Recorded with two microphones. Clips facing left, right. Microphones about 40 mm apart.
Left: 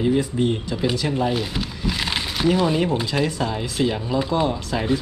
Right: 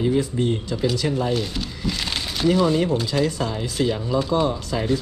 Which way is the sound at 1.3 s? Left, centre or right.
Centre.